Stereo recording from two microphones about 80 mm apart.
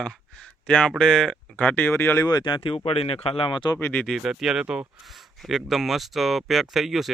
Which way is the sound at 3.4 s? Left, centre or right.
Left.